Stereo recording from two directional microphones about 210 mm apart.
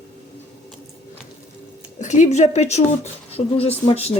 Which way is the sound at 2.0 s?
35° left (ahead or behind).